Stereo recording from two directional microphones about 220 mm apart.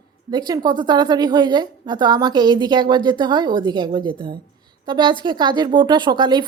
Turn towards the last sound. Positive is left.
turn(degrees=-20)  # may be behind; listen again after turning